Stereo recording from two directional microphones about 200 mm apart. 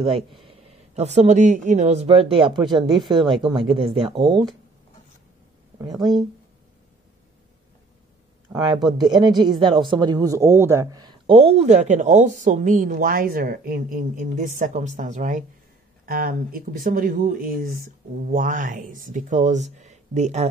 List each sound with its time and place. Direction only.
0.0 s speech: 30° right (ahead or behind)
5.8 s speech: 20° right (ahead or behind)
8.5 s speech: 20° right (ahead or behind); by 20.4 s 35° right (ahead or behind)